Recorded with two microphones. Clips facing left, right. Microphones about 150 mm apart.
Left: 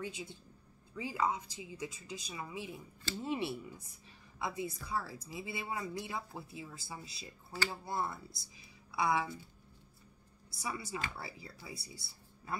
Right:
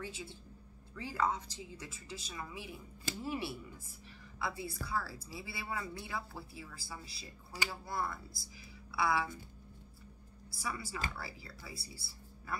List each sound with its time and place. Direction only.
0.0 s a woman's voice: 15° left (ahead or behind)
10.5 s a woman's voice: 20° left (ahead or behind)